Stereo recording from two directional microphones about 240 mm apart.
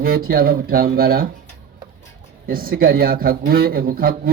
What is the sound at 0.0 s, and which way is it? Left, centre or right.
A man's voice, right.